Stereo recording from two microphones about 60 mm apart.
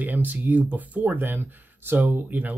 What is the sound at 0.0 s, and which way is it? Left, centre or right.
Speech, right.